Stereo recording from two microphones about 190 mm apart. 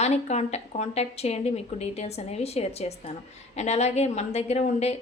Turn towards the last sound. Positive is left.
turn(degrees=35)  # may be behind; listen again after turning